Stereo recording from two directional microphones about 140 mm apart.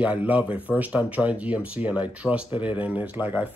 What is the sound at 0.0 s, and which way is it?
Speech, 10° right (ahead or behind).